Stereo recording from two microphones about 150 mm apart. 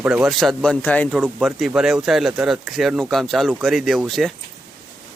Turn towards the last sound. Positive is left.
turn(degrees=0)  # may be behind; listen again after turning